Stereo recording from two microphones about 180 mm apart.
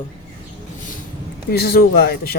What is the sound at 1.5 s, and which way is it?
Speech, 60° left (ahead or behind).